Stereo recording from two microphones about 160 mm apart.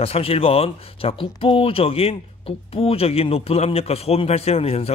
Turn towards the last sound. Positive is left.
turn(degrees=40)  # may be behind; listen again after turning